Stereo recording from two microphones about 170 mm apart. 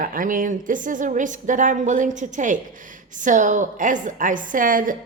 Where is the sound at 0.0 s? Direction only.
55° right (ahead or behind).